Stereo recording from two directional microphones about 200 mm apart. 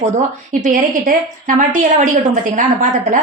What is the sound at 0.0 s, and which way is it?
A woman's voice, 35° right (ahead or behind).